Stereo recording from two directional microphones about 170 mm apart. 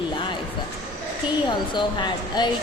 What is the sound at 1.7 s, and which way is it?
Speech, 25° left (ahead or behind).